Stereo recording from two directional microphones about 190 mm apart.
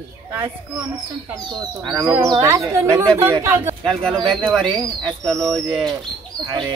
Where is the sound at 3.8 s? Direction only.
25° right (ahead or behind).